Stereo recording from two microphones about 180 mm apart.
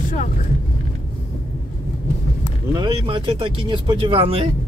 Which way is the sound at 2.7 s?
25° right (ahead or behind).